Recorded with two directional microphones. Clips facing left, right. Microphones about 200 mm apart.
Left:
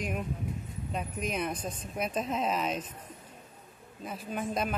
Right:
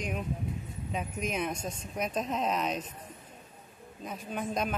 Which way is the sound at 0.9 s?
Centre (ahead or behind).